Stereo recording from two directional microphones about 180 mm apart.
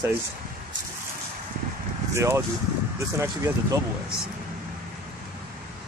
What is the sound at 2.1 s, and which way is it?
Speech, 15° right (ahead or behind).